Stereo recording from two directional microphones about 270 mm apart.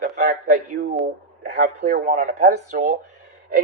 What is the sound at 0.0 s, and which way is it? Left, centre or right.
A man's voice, right.